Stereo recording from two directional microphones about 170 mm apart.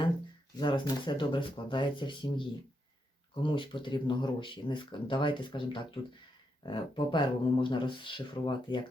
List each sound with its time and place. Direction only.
0.6 s speech: 25° left (ahead or behind)